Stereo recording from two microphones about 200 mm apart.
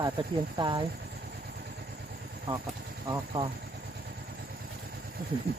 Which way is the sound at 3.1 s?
20° right (ahead or behind).